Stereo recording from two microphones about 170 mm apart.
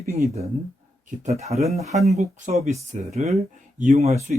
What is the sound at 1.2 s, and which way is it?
Speech, 40° right (ahead or behind).